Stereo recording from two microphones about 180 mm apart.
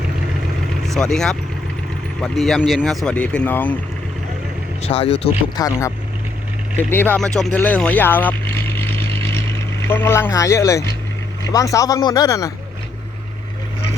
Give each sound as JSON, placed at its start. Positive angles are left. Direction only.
{"t": 0.9, "sound": "speech", "side_deg": 5}
{"t": 4.8, "sound": "speech", "side_deg": 35}
{"t": 5.6, "sound": "speech", "side_deg": 20}
{"t": 6.9, "sound": "speech", "side_deg": 10}